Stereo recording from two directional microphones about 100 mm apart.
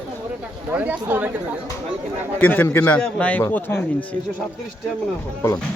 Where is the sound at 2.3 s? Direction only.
20° left (ahead or behind).